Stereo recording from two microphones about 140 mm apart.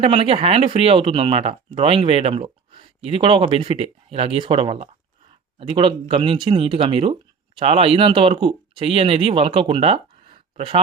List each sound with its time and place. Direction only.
0.0 s speech: 40° right (ahead or behind)